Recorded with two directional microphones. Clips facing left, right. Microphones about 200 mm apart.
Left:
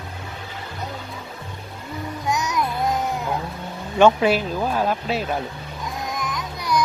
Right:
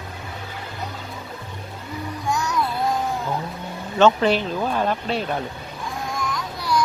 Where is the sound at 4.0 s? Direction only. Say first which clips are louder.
Left 1 dB; 10° left (ahead or behind).